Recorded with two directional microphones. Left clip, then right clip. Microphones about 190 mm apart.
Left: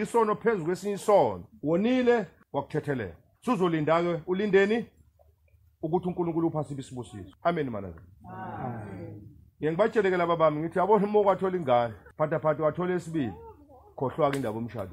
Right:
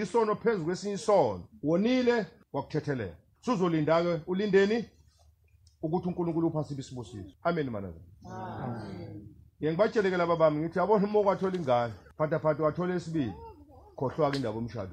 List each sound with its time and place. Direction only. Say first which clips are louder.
0.0 s speech: left 2 dB; 20° left (ahead or behind)
9.6 s speech: left 2 dB; 20° left (ahead or behind)